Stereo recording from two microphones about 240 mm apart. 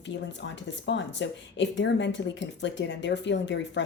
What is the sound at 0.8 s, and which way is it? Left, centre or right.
A woman's voice, left.